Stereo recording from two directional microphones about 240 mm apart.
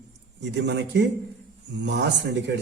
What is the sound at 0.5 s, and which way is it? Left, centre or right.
Speech, right.